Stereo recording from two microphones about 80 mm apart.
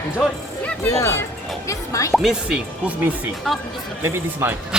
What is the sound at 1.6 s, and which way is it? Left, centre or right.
Music, left.